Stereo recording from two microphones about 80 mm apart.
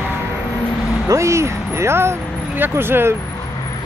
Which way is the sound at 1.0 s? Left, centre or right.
Right.